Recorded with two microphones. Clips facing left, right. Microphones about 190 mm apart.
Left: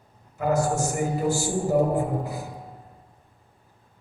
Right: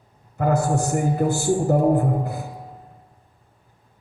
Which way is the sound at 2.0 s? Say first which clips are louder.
Right 3 dB; 60° right (ahead or behind).